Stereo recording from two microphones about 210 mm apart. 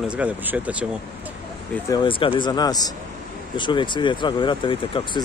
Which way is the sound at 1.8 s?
20° left (ahead or behind).